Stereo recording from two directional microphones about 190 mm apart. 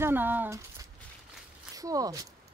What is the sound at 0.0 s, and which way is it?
Speech, 10° right (ahead or behind).